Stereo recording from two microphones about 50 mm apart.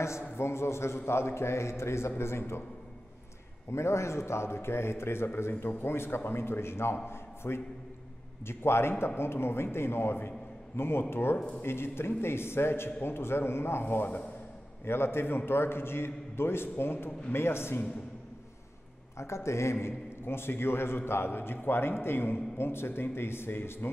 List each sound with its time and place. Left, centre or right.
0.4 s a man's voice: left
3.7 s a man's voice: left
19.1 s a man's voice: left